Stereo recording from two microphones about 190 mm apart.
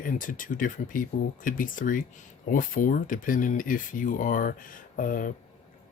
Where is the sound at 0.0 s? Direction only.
45° left (ahead or behind).